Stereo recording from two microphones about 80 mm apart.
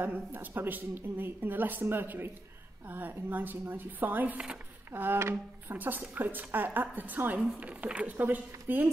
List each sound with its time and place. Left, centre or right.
0.0 s speech: right